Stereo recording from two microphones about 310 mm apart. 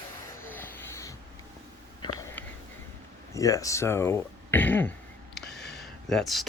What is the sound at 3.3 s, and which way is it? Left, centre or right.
Speech, centre.